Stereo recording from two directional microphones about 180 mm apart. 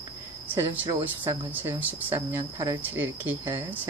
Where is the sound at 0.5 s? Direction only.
10° right (ahead or behind).